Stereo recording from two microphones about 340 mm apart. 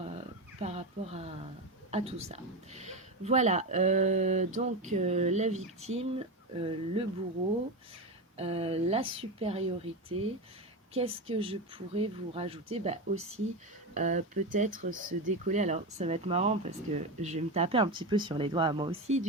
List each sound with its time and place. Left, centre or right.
0.6 s a woman's voice: centre
8.4 s a woman's voice: centre